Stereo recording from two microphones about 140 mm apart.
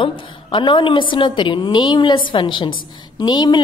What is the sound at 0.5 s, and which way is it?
A woman's voice, 35° left (ahead or behind).